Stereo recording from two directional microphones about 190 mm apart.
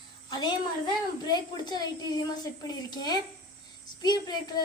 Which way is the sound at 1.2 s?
20° left (ahead or behind).